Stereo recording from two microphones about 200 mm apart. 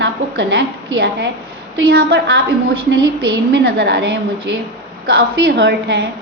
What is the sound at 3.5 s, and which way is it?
A woman's voice, 60° right (ahead or behind).